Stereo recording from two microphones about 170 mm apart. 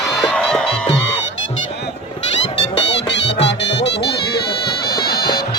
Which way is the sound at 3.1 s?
90° left.